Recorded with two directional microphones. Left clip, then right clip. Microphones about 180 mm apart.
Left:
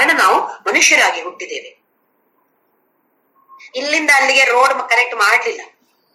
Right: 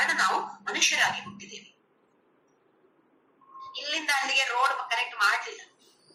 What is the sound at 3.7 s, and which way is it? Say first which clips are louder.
A woman's voice: left 15 dB; 60° left (ahead or behind).